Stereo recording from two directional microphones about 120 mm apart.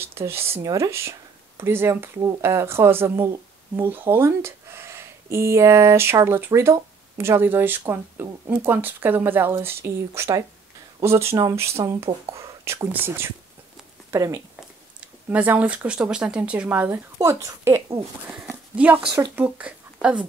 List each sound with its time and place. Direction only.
0.0 s speech: 20° right (ahead or behind)
15.0 s speech: 15° right (ahead or behind)
17.2 s speech: 25° right (ahead or behind)
18.2 s speech: 5° right (ahead or behind)
18.5 s a sound: 10° right (ahead or behind)
19.3 s speech: 10° right (ahead or behind)